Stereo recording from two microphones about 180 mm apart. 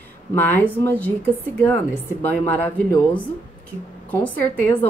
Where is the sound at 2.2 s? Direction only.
10° left (ahead or behind).